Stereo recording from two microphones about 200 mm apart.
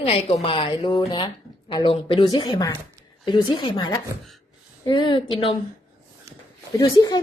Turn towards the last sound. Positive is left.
turn(degrees=20)  # may be behind; listen again after turning